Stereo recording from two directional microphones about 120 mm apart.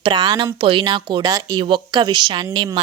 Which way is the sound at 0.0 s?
40° right (ahead or behind).